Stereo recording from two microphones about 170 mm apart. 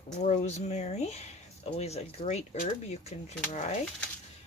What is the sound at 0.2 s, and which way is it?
Speech, 45° left (ahead or behind).